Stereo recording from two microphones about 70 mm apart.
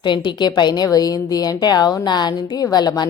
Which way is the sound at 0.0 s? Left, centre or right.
Left.